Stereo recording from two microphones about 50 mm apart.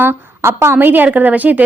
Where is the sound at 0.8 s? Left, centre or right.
Right.